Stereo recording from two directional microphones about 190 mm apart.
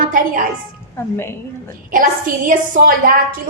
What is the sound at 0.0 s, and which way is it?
Speech, 45° right (ahead or behind).